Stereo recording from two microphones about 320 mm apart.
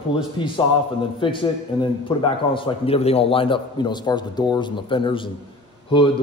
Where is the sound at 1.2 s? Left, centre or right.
Centre.